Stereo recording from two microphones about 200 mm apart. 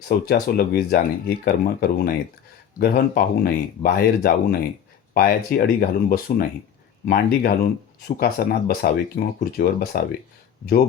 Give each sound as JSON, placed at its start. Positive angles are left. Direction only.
{"t": 0.3, "sound": "speech", "side_deg": 50}